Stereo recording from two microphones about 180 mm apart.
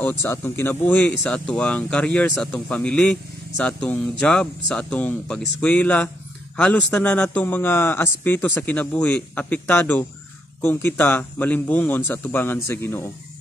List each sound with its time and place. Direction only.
0.0 s speech: 15° left (ahead or behind)